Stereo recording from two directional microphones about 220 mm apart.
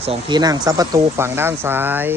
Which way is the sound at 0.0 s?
25° right (ahead or behind).